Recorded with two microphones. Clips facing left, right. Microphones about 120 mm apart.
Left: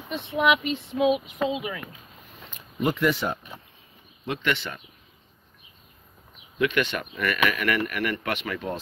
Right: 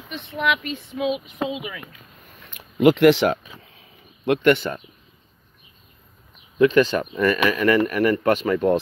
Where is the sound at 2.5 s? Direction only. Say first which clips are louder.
Right 10 dB; 90° right.